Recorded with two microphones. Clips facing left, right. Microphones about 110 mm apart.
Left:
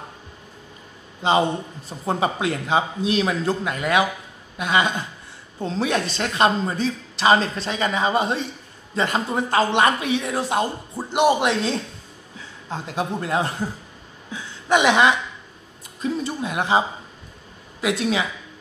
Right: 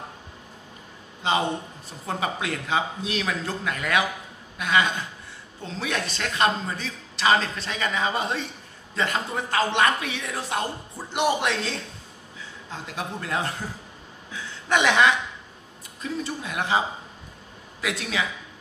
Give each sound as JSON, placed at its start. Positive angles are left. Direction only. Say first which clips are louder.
{"t": 2.0, "sound": "a woman's voice", "louder": "left 6 dB", "side_deg": 25}
{"t": 14.3, "sound": "a sound", "louder": "left 4 dB", "side_deg": 15}
{"t": 16.0, "sound": "a woman's voice", "louder": "left 5 dB", "side_deg": 25}